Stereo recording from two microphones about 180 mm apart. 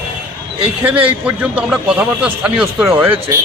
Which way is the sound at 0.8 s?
10° right (ahead or behind).